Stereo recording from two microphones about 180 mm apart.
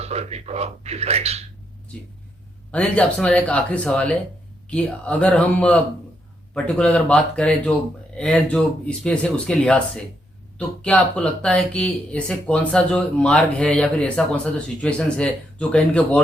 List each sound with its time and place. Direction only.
0.0 s speech: 35° right (ahead or behind)
2.7 s speech: 5° left (ahead or behind)